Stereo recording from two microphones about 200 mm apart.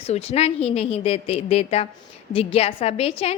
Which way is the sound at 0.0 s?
30° left (ahead or behind).